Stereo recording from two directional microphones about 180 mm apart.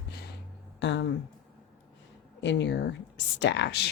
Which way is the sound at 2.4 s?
80° left.